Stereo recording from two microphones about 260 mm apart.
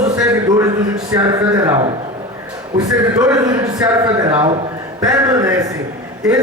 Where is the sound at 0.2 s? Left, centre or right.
Centre.